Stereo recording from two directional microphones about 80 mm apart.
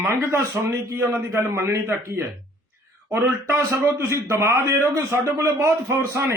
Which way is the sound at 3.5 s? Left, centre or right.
Right.